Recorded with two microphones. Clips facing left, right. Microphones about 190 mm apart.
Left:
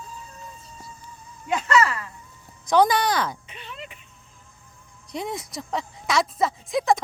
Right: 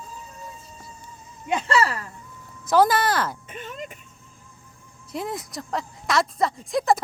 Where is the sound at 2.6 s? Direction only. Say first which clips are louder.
Even; 5° right (ahead or behind).